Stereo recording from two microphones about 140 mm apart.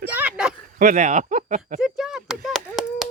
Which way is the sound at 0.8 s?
65° right (ahead or behind).